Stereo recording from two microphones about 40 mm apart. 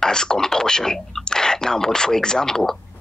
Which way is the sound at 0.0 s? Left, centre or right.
Centre.